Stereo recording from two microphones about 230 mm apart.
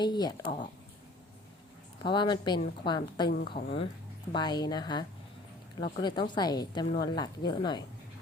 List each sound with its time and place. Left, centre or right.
0.0 s speech: centre
2.0 s a woman's voice: centre
3.2 s speech: left
3.5 s a woman's voice: left